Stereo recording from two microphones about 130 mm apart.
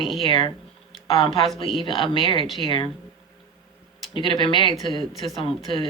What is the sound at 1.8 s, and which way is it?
Speech, 40° left (ahead or behind).